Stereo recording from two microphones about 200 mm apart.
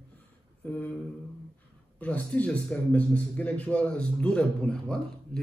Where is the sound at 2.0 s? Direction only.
5° left (ahead or behind).